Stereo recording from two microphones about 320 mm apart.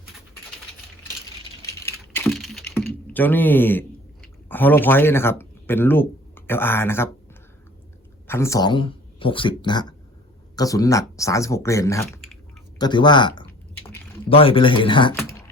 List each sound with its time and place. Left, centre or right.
1.6 s a sound: centre
8.3 s speech: centre
13.8 s typing: centre